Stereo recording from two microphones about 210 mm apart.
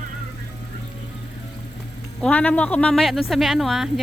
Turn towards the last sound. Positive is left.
turn(degrees=0)  # may be behind; listen again after turning